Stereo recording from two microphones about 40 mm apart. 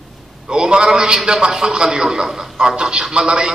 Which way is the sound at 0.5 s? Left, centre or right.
Right.